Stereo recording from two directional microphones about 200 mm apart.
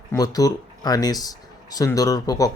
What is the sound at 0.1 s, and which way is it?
Speech, 20° left (ahead or behind).